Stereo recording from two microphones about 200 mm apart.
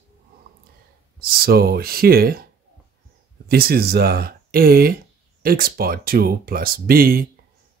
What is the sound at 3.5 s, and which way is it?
Speech, 50° right (ahead or behind).